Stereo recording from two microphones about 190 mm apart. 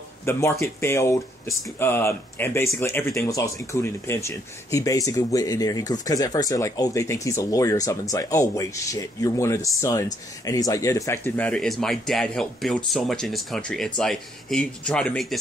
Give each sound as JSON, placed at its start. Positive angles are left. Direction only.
{"t": 0.2, "sound": "speech", "side_deg": 15}